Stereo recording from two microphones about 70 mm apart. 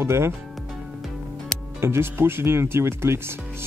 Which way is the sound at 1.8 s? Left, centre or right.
Right.